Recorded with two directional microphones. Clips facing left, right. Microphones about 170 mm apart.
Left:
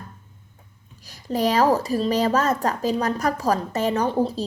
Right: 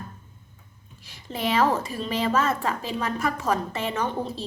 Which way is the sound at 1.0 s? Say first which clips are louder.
Left 6 dB; 40° left (ahead or behind).